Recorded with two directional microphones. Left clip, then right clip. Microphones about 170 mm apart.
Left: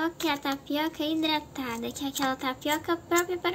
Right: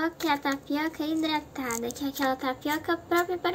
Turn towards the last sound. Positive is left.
turn(degrees=15)  # may be behind; listen again after turning